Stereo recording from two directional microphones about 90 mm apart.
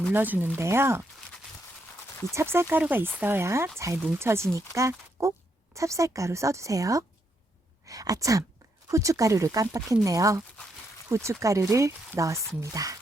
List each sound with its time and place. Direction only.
0.1 s speech: 20° right (ahead or behind)
2.3 s speech: 30° right (ahead or behind)